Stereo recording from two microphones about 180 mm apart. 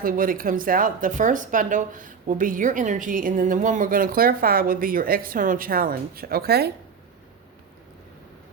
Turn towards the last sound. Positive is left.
turn(degrees=-60)  # may be behind; listen again after turning